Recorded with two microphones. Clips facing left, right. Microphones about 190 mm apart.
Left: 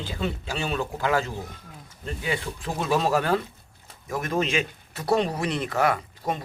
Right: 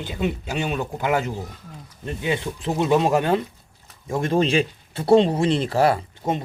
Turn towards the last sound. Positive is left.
turn(degrees=-25)  # may be behind; listen again after turning